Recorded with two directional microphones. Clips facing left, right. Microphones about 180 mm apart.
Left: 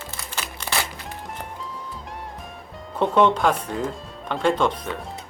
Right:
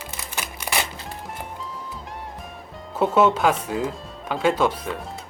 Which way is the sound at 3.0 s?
5° right (ahead or behind).